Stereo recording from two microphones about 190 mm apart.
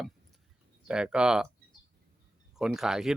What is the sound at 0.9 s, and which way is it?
Speech, 5° right (ahead or behind).